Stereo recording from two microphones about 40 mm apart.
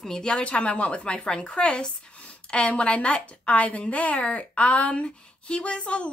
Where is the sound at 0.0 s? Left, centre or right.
Centre.